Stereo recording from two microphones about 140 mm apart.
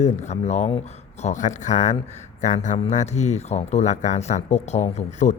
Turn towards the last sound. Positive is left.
turn(degrees=60)  # may be behind; listen again after turning